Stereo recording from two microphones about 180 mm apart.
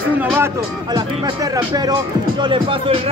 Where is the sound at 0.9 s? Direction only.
20° right (ahead or behind).